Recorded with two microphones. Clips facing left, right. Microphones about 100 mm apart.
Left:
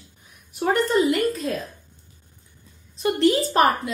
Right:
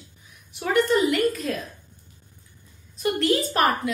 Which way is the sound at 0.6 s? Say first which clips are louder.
Left 1 dB; 35° left (ahead or behind).